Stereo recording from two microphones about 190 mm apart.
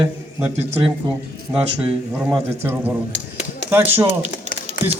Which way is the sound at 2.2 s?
10° right (ahead or behind).